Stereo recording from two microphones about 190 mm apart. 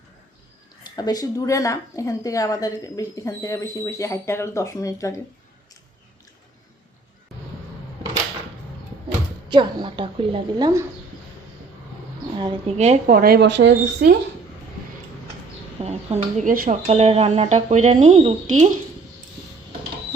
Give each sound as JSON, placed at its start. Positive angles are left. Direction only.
{"t": 0.9, "sound": "a woman's voice", "side_deg": 20}
{"t": 9.5, "sound": "a woman's voice", "side_deg": -25}
{"t": 12.4, "sound": "speech", "side_deg": -30}
{"t": 13.1, "sound": "speech", "side_deg": -50}
{"t": 15.8, "sound": "speech", "side_deg": -35}